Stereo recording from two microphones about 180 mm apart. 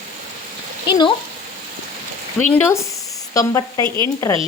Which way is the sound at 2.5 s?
15° left (ahead or behind).